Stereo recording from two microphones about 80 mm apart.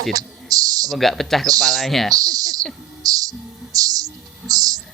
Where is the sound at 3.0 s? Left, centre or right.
Right.